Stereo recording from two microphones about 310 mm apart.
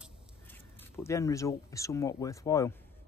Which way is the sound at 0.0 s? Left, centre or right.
Centre.